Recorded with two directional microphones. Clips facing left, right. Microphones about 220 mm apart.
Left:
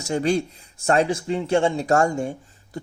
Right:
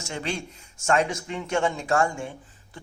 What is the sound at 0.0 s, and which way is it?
Speech, 40° left (ahead or behind).